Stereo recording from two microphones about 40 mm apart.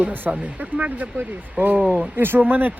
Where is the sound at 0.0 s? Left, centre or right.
Right.